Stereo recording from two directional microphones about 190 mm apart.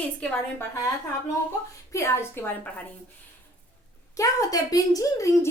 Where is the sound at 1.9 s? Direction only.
15° left (ahead or behind).